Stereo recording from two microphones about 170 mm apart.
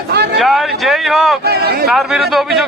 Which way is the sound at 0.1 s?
75° right (ahead or behind).